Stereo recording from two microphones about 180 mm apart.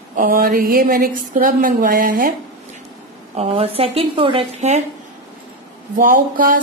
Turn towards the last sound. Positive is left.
turn(degrees=-50)  # may be behind; listen again after turning